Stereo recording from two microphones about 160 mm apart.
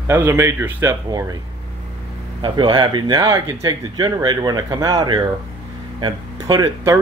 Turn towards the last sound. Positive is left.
turn(degrees=-25)  # may be behind; listen again after turning